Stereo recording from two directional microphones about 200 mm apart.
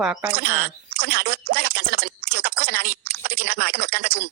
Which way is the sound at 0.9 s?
50° right (ahead or behind).